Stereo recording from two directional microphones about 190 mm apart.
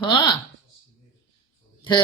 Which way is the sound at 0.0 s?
25° left (ahead or behind).